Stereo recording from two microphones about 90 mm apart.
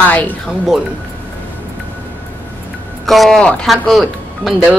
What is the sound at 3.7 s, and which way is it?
Speech, centre (ahead or behind).